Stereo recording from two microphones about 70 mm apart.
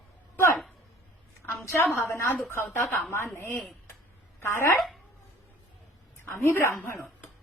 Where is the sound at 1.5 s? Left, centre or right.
Left.